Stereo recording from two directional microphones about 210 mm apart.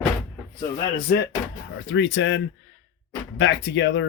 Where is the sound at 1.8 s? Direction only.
60° left (ahead or behind).